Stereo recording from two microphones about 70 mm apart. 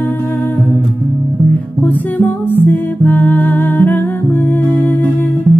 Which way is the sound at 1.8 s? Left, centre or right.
Left.